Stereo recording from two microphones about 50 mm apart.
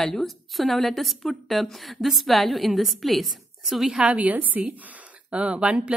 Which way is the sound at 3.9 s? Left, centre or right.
Right.